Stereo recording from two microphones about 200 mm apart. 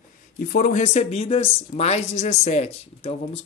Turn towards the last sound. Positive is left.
turn(degrees=30)  # may be behind; listen again after turning